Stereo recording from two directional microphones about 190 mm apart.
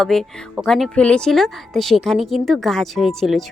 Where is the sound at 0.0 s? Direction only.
Centre (ahead or behind).